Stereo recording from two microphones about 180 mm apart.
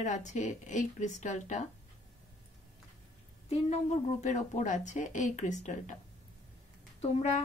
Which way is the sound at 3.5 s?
40° left (ahead or behind).